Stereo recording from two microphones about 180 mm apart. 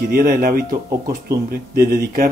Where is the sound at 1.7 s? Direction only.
55° right (ahead or behind).